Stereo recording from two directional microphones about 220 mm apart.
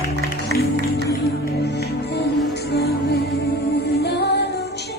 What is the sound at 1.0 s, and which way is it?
Music, 50° left (ahead or behind).